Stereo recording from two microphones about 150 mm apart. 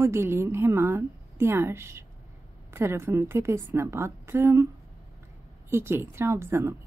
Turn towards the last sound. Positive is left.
turn(degrees=-15)  # may be behind; listen again after turning